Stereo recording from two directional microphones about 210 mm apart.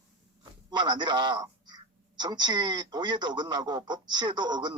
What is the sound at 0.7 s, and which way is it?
A man's voice, 20° right (ahead or behind).